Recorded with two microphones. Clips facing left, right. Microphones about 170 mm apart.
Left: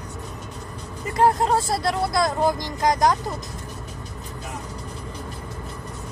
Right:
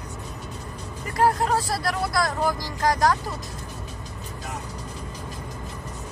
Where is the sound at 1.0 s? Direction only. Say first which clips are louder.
Left 2 dB; 20° left (ahead or behind).